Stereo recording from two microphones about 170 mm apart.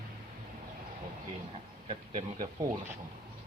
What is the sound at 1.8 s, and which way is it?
Speech, 45° right (ahead or behind).